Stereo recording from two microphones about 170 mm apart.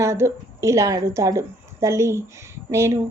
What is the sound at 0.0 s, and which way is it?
A woman's voice, 15° right (ahead or behind).